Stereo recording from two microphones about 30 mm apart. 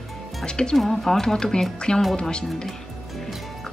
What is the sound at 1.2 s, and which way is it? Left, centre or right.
Speech, left.